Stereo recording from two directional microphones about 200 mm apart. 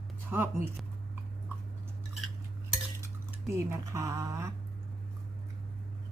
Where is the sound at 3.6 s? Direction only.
15° right (ahead or behind).